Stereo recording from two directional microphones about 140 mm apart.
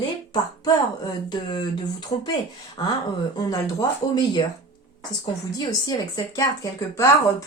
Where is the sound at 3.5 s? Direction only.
30° left (ahead or behind).